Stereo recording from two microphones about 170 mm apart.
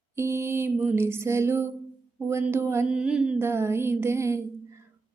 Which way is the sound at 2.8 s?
5° right (ahead or behind).